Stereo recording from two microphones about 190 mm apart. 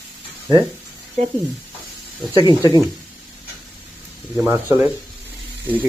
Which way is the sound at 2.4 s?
20° left (ahead or behind).